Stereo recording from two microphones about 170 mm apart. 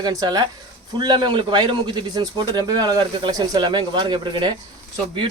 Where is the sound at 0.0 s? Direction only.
20° right (ahead or behind).